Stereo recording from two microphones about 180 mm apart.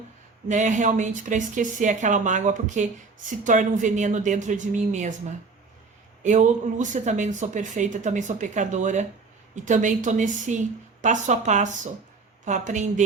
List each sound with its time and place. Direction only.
0.4 s speech: 40° right (ahead or behind)
6.2 s speech: 40° right (ahead or behind)